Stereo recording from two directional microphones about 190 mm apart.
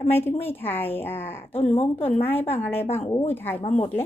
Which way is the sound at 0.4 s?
10° left (ahead or behind).